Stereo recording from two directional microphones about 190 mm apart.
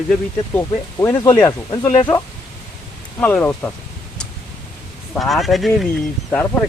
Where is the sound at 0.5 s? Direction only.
15° left (ahead or behind).